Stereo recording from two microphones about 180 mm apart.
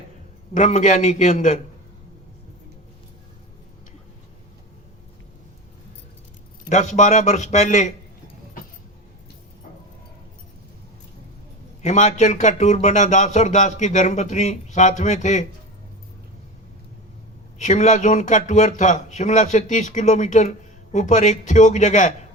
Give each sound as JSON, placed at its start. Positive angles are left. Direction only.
{"t": 0.5, "sound": "a man's voice", "side_deg": 45}
{"t": 6.7, "sound": "speech", "side_deg": 40}
{"t": 11.8, "sound": "speech", "side_deg": 40}
{"t": 17.6, "sound": "a man's voice", "side_deg": 40}